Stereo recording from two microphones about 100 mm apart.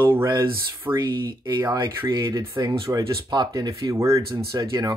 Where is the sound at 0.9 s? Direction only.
50° right (ahead or behind).